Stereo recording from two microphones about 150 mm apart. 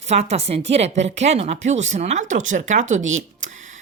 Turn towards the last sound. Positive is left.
turn(degrees=-55)  # may be behind; listen again after turning